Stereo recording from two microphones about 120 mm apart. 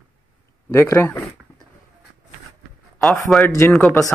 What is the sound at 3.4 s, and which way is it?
Speech, 25° left (ahead or behind).